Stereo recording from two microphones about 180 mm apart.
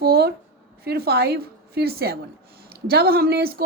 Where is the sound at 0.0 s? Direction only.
60° right (ahead or behind).